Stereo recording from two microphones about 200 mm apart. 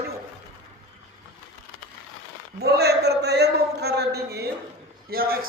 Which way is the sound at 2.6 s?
55° right (ahead or behind).